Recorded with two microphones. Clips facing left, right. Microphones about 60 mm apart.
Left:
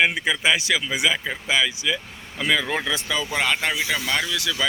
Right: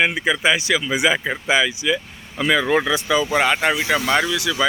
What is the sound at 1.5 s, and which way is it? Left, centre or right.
Speech, centre.